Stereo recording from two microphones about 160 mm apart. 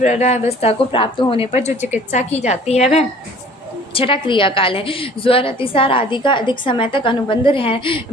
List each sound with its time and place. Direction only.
0.0 s a woman's voice: 45° left (ahead or behind)
3.9 s a woman's voice: 35° left (ahead or behind)